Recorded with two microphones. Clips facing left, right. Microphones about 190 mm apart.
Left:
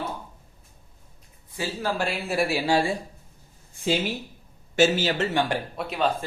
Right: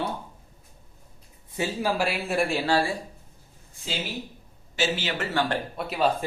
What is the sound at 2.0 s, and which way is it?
Speech, centre (ahead or behind).